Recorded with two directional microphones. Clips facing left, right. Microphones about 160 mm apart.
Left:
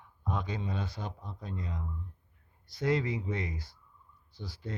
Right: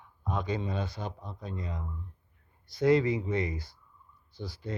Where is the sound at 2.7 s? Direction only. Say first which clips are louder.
Right 6 dB; 5° left (ahead or behind).